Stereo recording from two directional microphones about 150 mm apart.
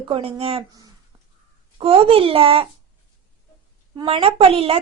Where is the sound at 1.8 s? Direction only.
40° right (ahead or behind).